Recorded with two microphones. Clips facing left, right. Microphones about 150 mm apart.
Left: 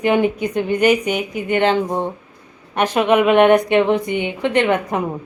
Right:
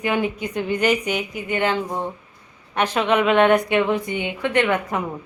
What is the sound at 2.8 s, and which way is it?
A woman's voice, 15° left (ahead or behind).